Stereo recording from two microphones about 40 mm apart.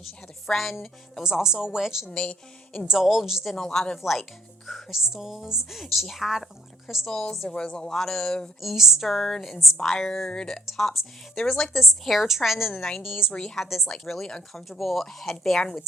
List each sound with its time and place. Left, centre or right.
0.4 s speech: centre
1.2 s a woman's voice: centre
2.0 s a woman's voice: left
2.8 s a woman's voice: centre
3.5 s speech: centre
7.1 s speech: centre
8.6 s speech: centre
9.1 s speech: centre
10.7 s speech: centre
13.3 s a woman's voice: left
13.6 s speech: centre